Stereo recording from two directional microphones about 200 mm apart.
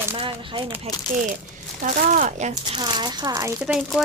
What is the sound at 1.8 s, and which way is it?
Speech, 35° right (ahead or behind).